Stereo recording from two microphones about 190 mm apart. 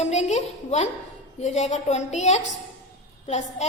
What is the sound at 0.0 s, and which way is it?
A woman's voice, 35° left (ahead or behind).